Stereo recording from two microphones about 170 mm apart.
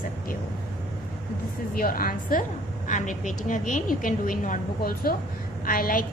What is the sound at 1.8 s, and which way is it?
A woman's voice, 60° left (ahead or behind).